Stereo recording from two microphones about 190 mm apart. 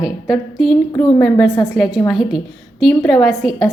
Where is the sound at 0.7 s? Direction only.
Centre (ahead or behind).